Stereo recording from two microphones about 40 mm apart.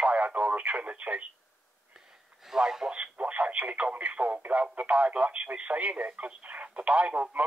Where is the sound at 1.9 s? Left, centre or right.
Centre.